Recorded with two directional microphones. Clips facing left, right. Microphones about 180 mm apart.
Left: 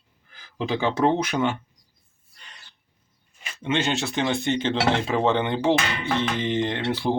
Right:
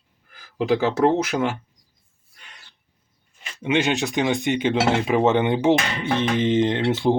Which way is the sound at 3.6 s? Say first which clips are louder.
Right 3 dB; 15° right (ahead or behind).